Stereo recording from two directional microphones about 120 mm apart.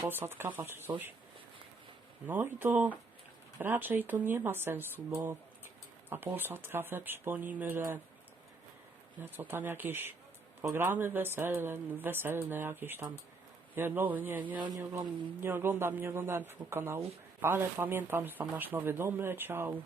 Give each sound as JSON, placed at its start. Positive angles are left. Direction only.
{"t": 0.1, "sound": "speech", "side_deg": -20}
{"t": 2.2, "sound": "speech", "side_deg": -15}
{"t": 9.2, "sound": "speech", "side_deg": -15}